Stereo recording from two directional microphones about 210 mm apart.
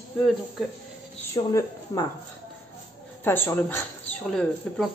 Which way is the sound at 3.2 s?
10° left (ahead or behind).